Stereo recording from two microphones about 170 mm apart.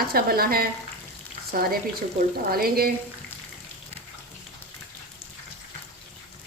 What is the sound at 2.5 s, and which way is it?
Speech, 60° right (ahead or behind).